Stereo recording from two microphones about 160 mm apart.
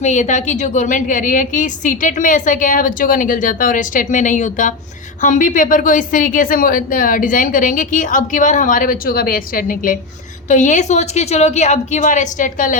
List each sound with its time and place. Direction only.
0.0 s a woman's voice: 50° left (ahead or behind)